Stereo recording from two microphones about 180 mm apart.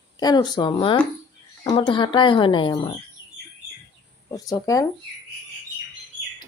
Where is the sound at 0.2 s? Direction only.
20° left (ahead or behind).